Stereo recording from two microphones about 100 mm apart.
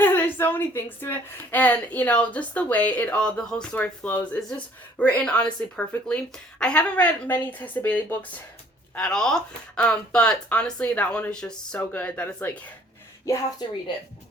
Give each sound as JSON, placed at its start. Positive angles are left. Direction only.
{"t": 0.0, "sound": "a woman's voice", "side_deg": 20}
{"t": 9.0, "sound": "a woman's voice", "side_deg": 5}